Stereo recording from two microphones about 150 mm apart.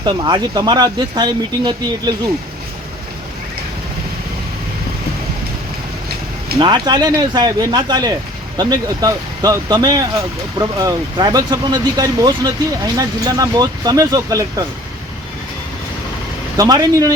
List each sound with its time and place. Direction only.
0.0 s speech: 30° right (ahead or behind)
6.6 s speech: 30° right (ahead or behind)
16.6 s speech: 25° right (ahead or behind)